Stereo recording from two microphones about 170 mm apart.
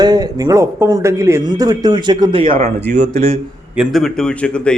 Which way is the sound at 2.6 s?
80° right.